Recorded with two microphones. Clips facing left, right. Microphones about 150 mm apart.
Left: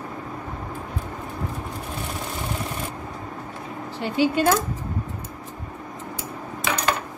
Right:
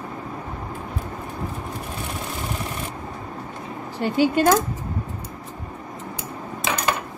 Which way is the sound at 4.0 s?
45° right (ahead or behind).